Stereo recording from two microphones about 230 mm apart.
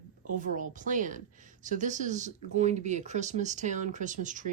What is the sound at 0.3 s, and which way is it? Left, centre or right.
A woman's voice, right.